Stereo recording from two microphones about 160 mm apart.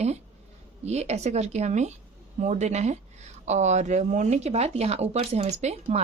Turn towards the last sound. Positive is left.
turn(degrees=-45)  # may be behind; listen again after turning